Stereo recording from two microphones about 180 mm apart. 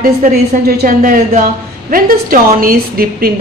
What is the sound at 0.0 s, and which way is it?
A woman's voice, 55° right (ahead or behind).